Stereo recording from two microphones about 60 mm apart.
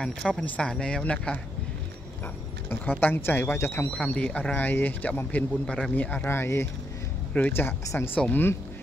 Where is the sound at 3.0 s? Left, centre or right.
Left.